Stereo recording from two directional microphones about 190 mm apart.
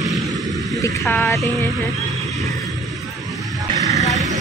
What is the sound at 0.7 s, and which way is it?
Speech, 15° left (ahead or behind).